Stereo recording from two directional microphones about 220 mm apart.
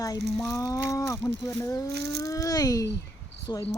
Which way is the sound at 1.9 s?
45° right (ahead or behind).